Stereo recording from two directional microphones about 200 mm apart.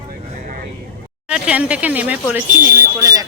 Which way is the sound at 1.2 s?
5° right (ahead or behind).